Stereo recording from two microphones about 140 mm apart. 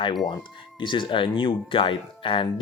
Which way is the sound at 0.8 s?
35° left (ahead or behind).